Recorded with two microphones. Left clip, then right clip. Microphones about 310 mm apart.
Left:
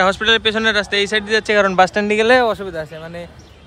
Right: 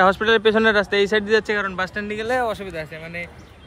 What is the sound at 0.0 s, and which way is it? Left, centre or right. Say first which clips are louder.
Speech: left 1 dB; centre.